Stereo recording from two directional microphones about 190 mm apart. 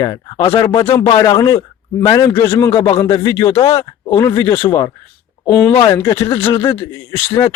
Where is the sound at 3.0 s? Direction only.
15° left (ahead or behind).